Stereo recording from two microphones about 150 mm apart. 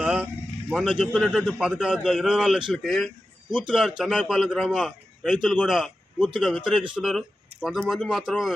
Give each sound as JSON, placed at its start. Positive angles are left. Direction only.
{"t": 0.0, "sound": "vehicle", "side_deg": -5}
{"t": 0.7, "sound": "a man's voice", "side_deg": 0}